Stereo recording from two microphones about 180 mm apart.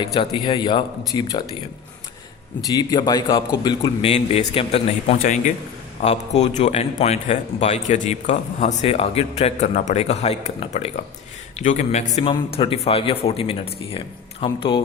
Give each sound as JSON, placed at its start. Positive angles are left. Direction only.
{"t": 0.0, "sound": "speech", "side_deg": 25}
{"t": 2.6, "sound": "a man's voice", "side_deg": 20}